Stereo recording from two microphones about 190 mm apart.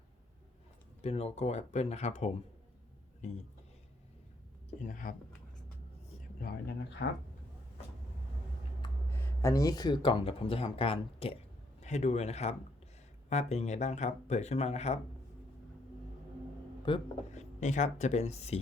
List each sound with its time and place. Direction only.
1.0 s speech: 35° left (ahead or behind)
4.8 s speech: 45° left (ahead or behind)
6.4 s speech: 60° left (ahead or behind)
8.8 s speech: 15° left (ahead or behind); by 14.9 s 35° left (ahead or behind)
16.9 s speech: 25° left (ahead or behind)
17.3 s speech: 40° left (ahead or behind)